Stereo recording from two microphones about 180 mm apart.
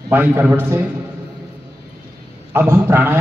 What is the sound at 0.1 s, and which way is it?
Speech, 10° right (ahead or behind).